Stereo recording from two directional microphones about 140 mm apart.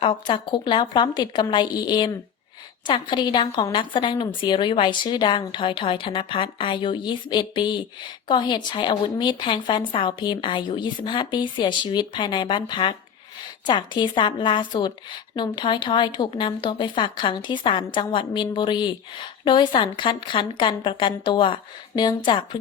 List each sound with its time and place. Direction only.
0.0 s speech: 35° left (ahead or behind)